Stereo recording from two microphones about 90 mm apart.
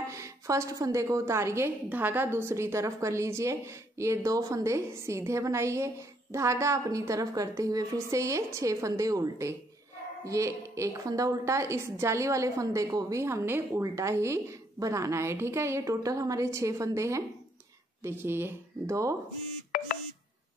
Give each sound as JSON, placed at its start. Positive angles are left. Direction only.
{"t": 0.1, "sound": "a woman's voice", "side_deg": -35}
{"t": 1.9, "sound": "a woman's voice", "side_deg": -20}